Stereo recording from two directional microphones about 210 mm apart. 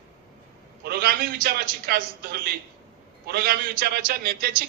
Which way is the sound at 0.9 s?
45° right (ahead or behind).